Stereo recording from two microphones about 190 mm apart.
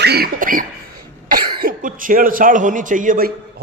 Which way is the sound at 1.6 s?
45° right (ahead or behind).